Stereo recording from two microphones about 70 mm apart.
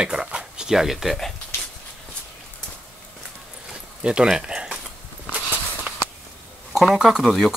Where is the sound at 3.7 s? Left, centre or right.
Centre.